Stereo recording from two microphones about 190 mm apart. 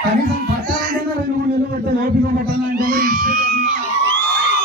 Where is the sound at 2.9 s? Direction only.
50° right (ahead or behind).